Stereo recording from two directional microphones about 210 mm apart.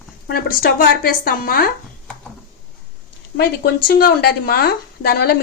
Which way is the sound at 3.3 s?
50° left (ahead or behind).